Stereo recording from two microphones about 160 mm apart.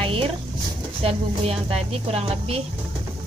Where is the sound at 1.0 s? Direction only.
35° right (ahead or behind).